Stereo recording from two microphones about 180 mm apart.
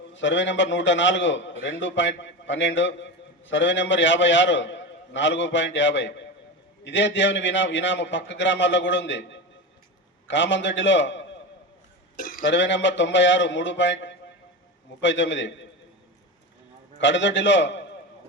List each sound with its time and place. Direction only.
0.1 s a man's voice: 90° left
12.1 s a sound: 55° left (ahead or behind)
12.5 s a man's voice: 85° left
17.0 s a man's voice: 85° left